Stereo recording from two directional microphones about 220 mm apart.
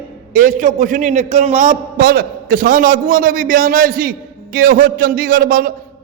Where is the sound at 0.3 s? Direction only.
35° right (ahead or behind).